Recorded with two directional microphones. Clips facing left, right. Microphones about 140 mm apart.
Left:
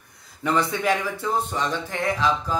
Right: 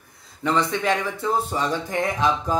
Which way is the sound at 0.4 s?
10° left (ahead or behind).